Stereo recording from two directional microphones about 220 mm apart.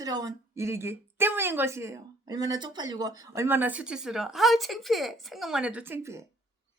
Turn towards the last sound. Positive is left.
turn(degrees=-10)  # may be behind; listen again after turning